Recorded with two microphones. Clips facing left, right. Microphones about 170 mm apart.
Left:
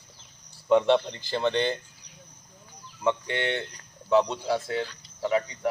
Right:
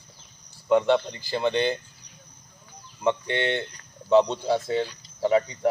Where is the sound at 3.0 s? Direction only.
20° right (ahead or behind).